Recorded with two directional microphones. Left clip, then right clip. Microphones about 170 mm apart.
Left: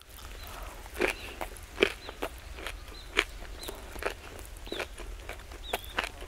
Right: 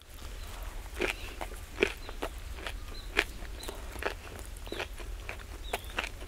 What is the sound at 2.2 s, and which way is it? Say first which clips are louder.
Walk: left 1 dB; 10° left (ahead or behind).